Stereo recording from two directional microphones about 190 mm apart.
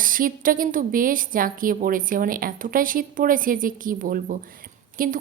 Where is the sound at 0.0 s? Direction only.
45° right (ahead or behind).